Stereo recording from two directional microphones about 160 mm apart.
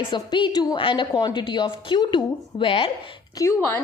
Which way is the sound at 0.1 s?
30° left (ahead or behind).